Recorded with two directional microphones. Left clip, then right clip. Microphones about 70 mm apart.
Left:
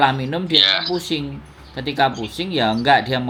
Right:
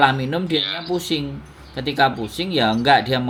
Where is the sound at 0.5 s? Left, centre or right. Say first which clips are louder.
Left 9 dB; left.